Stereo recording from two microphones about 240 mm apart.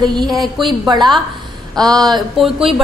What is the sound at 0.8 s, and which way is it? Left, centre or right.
Speech, centre.